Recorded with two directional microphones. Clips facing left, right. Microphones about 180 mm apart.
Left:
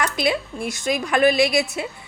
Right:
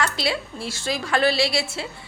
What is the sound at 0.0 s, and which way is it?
A woman's voice, 20° left (ahead or behind).